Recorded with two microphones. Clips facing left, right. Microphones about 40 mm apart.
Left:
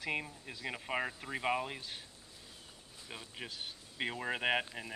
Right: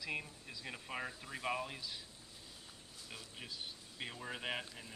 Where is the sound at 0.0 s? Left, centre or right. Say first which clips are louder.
Left 5 dB; left.